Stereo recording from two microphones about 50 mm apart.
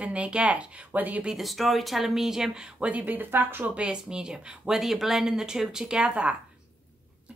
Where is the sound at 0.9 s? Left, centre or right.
Right.